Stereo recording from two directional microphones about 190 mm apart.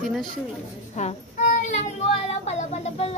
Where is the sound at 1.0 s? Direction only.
40° left (ahead or behind).